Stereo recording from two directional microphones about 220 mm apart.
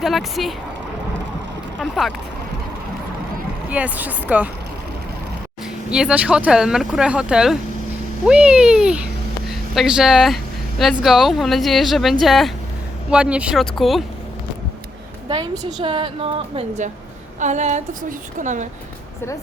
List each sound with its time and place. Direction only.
0.0 s speech: centre (ahead or behind)
1.8 s speech: centre (ahead or behind)
3.7 s speech: 5° right (ahead or behind)
5.9 s speech: 5° right (ahead or behind)
9.5 s a sound: centre (ahead or behind)
11.0 s speech: centre (ahead or behind)
15.3 s a woman's voice: 20° right (ahead or behind)